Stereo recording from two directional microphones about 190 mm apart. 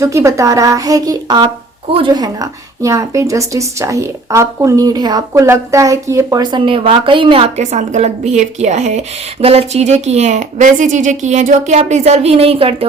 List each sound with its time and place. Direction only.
0.0 s a woman's voice: 15° right (ahead or behind); by 12.7 s 30° right (ahead or behind)